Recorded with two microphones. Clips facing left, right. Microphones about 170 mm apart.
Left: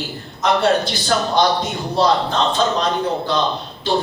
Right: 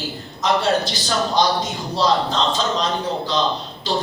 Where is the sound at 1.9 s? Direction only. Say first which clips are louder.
Left 2 dB; 55° left (ahead or behind).